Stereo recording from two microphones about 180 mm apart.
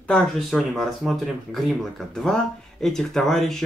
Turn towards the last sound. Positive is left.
turn(degrees=0)  # may be behind; listen again after turning